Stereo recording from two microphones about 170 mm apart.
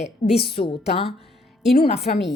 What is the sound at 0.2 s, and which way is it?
A woman's voice, 35° left (ahead or behind).